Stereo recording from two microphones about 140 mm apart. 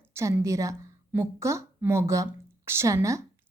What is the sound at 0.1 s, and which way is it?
A woman's voice, 20° right (ahead or behind).